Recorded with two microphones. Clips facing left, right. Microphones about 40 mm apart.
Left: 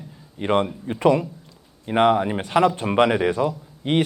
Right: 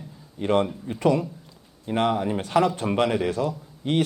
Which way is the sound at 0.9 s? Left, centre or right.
Centre.